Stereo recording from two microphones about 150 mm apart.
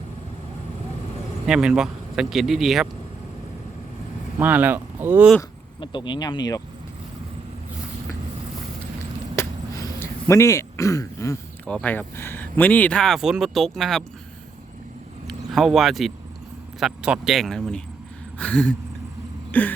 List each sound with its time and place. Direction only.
1.5 s speech: 5° right (ahead or behind)
4.4 s speech: 10° right (ahead or behind)
5.8 s speech: 30° left (ahead or behind)
9.3 s throat clearing: 20° left (ahead or behind)
11.7 s speech: 10° left (ahead or behind)
15.3 s vehicle: centre (ahead or behind)
16.8 s speech: 5° right (ahead or behind)
19.5 s a sound: 10° left (ahead or behind)